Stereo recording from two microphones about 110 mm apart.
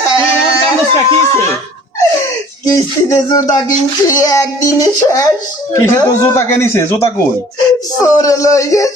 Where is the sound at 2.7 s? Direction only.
35° left (ahead or behind).